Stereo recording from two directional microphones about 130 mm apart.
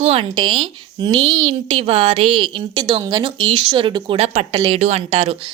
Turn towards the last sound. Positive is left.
turn(degrees=-50)  # may be behind; listen again after turning